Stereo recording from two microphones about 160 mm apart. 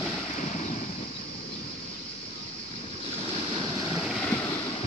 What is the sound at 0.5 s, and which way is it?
Waves, 45° left (ahead or behind).